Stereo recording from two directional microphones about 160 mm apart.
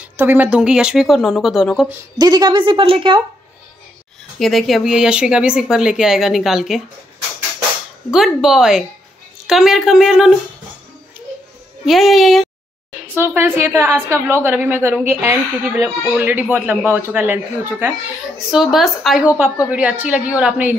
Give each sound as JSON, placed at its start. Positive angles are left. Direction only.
{"t": 0.0, "sound": "speech", "side_deg": -10}
{"t": 2.1, "sound": "a woman's voice", "side_deg": -25}
{"t": 4.4, "sound": "speech", "side_deg": 0}
{"t": 8.1, "sound": "speech", "side_deg": -5}
{"t": 11.8, "sound": "speech", "side_deg": 0}
{"t": 13.1, "sound": "a woman's voice", "side_deg": -15}
{"t": 18.5, "sound": "a woman's voice", "side_deg": 0}